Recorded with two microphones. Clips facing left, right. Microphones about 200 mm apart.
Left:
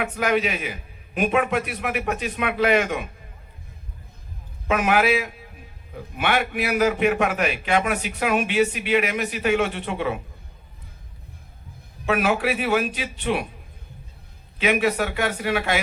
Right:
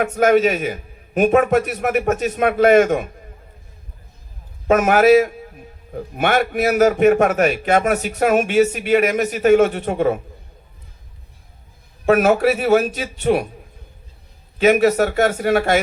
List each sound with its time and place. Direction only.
0.0 s a man's voice: 45° right (ahead or behind)
4.7 s a man's voice: 45° right (ahead or behind)
12.0 s a man's voice: 45° right (ahead or behind)
14.6 s a man's voice: 45° right (ahead or behind)